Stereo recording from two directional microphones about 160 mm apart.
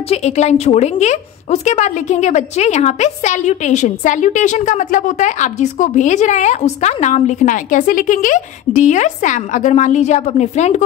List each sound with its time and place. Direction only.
0.1 s speech: 45° left (ahead or behind)